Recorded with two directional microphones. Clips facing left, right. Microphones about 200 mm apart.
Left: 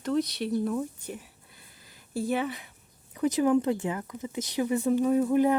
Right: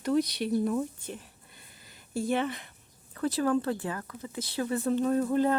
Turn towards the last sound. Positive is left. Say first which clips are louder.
# left 3 dB
turn(degrees=15)  # may be behind; listen again after turning